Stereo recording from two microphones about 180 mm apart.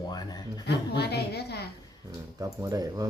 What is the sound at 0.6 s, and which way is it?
A woman's voice, 65° left (ahead or behind).